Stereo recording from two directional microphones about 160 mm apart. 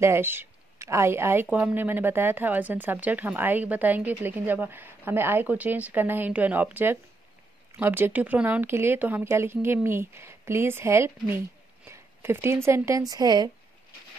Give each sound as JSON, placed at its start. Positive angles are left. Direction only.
{"t": 0.0, "sound": "a woman's voice", "side_deg": -15}